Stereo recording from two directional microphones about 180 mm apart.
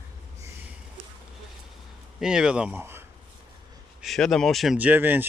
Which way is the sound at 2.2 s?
5° right (ahead or behind).